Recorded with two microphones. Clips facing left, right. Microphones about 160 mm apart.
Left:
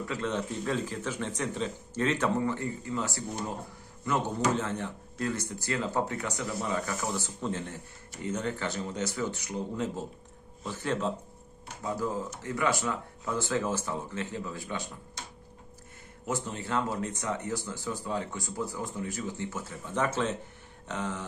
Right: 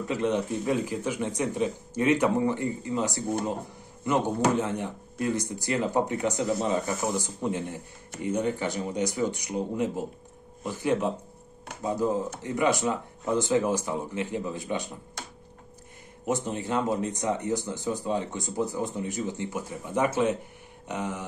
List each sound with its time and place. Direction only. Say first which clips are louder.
0.1 s speech: right 7 dB; 15° right (ahead or behind)
4.6 s speech: right 4 dB; 15° right (ahead or behind)
16.3 s speech: right 5 dB; 20° right (ahead or behind)